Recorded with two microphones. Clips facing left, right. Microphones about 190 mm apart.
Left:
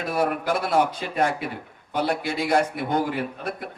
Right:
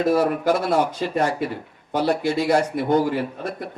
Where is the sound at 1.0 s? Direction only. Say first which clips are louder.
Right 2 dB; 55° left (ahead or behind).